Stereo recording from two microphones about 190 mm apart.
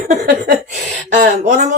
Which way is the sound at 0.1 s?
50° right (ahead or behind).